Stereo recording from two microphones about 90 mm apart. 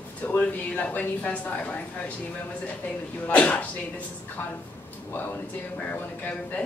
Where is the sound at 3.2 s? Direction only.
15° left (ahead or behind).